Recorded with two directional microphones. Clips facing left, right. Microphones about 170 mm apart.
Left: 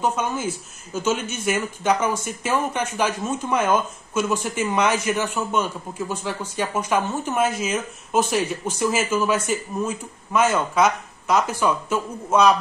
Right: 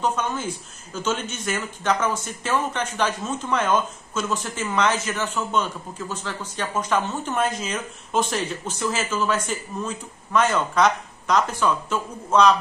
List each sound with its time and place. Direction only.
0.0 s a man's voice: 10° left (ahead or behind)